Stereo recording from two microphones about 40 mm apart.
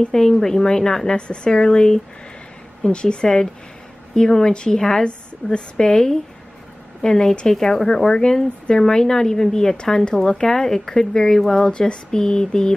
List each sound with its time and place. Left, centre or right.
0.1 s a woman's voice: centre
11.6 s a woman's voice: left